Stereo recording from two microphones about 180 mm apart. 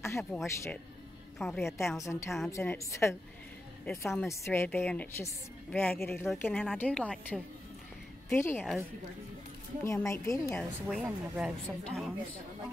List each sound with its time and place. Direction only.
0.0 s speech: 15° left (ahead or behind)
0.3 s a woman's voice: centre (ahead or behind)
1.8 s a woman's voice: 15° left (ahead or behind)
9.8 s a woman's voice: 15° left (ahead or behind)
10.5 s a woman's voice: centre (ahead or behind)